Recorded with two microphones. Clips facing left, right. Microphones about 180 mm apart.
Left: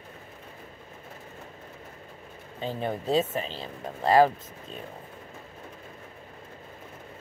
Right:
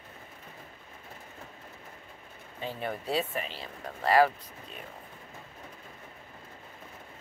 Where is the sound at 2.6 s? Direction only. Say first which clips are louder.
Left 4 dB; 30° left (ahead or behind).